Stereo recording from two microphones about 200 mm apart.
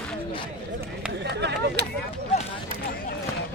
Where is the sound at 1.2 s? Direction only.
55° right (ahead or behind).